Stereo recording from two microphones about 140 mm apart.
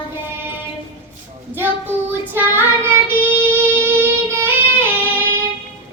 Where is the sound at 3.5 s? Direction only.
15° right (ahead or behind).